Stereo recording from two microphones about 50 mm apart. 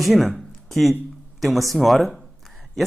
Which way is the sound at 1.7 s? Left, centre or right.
Centre.